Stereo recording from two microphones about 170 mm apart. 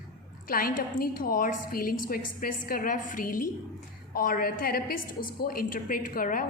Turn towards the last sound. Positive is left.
turn(degrees=55)  # may be behind; listen again after turning